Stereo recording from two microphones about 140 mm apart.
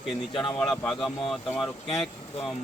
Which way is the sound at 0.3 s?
30° left (ahead or behind).